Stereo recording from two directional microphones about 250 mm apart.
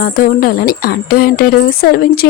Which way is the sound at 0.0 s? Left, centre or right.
Left.